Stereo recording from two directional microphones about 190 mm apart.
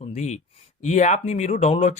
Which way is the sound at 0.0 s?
35° left (ahead or behind).